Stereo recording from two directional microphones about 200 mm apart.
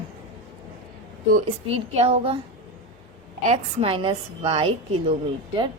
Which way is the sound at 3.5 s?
30° right (ahead or behind).